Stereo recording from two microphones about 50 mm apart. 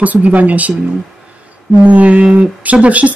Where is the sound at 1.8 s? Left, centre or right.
Right.